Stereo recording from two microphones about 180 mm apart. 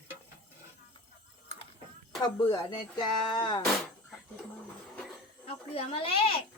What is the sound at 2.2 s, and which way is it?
Speech, 25° left (ahead or behind).